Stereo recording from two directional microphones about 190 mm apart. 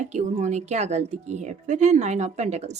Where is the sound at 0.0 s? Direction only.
40° right (ahead or behind).